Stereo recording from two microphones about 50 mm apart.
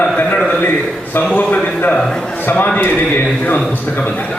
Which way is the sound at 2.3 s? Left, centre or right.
Left.